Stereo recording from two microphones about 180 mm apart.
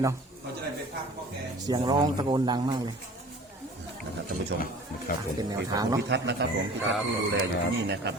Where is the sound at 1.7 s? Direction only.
25° right (ahead or behind).